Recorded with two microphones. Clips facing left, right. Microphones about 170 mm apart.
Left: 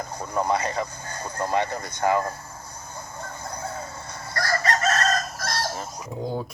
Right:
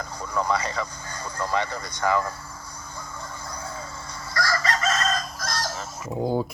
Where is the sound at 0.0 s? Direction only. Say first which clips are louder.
Left 1 dB; 55° left (ahead or behind).